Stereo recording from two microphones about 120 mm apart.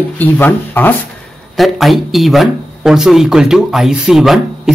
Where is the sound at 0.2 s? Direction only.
15° left (ahead or behind).